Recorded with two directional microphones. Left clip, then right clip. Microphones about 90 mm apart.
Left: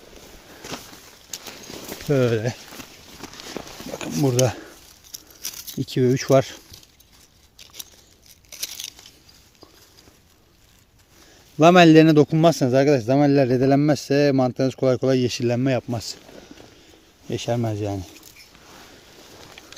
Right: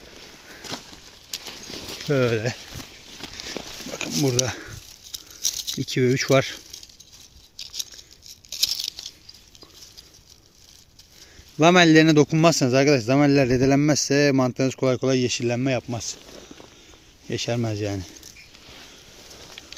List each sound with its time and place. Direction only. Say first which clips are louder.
0.6 s a sound: even; 20° right (ahead or behind)
2.0 s speech: left 1 dB; 30° left (ahead or behind)
2.6 s walk: even; 10° right (ahead or behind)
4.2 s speech: left 4 dB; 30° left (ahead or behind)
5.8 s speech: left 1 dB; 20° left (ahead or behind)
8.4 s tearing: right 8 dB; centre (ahead or behind)
11.6 s speech: left 3 dB; 30° left (ahead or behind)
12.4 s a man's voice: left 1 dB; 10° left (ahead or behind)
14.8 s speech: left 3 dB; 25° left (ahead or behind)
15.3 s speech: left 2 dB; 35° left (ahead or behind)
17.2 s a man's voice: left 1 dB; 20° left (ahead or behind)